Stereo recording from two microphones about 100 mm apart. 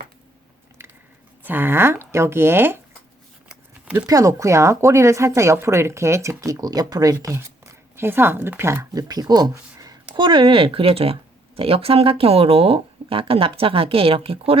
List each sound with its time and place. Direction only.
1.5 s speech: 20° right (ahead or behind)
3.5 s a sound: 10° right (ahead or behind)
4.0 s speech: 35° right (ahead or behind)
7.3 s speech: 25° right (ahead or behind); by 14.6 s 70° right (ahead or behind)